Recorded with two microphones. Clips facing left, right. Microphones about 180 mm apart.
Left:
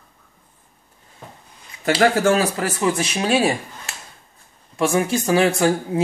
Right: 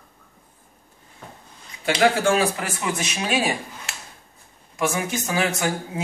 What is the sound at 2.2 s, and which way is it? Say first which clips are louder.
Speech: left 3 dB; 40° left (ahead or behind).